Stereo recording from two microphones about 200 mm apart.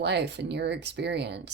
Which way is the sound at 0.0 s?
55° right (ahead or behind).